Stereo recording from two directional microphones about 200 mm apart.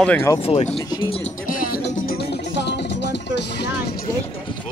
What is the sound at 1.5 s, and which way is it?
Music, 45° left (ahead or behind).